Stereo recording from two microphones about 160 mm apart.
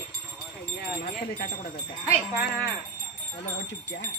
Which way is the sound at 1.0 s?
60° left (ahead or behind).